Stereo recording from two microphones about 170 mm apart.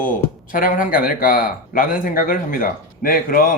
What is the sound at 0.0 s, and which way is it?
Speech, 50° left (ahead or behind).